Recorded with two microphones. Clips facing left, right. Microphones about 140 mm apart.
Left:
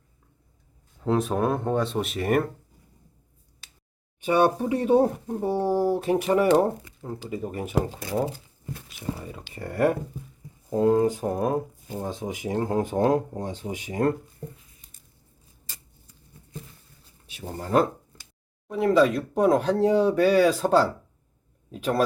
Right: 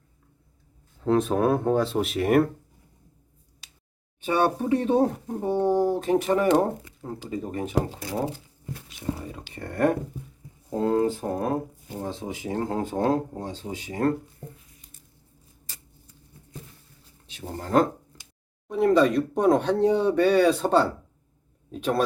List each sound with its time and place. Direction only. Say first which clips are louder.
1.0 s speech: right 2 dB; centre (ahead or behind)
4.2 s speech: left 2 dB; 15° left (ahead or behind)
17.4 s speech: even; 5° left (ahead or behind)